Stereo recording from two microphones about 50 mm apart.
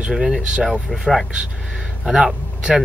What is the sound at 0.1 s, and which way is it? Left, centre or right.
Speech, centre.